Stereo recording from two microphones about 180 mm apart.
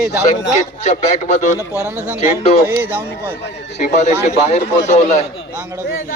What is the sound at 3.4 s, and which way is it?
Speech, 40° left (ahead or behind).